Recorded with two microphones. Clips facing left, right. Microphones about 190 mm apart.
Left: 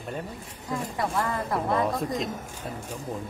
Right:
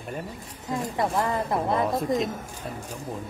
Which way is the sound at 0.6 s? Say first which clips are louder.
Right 3 dB; 20° right (ahead or behind).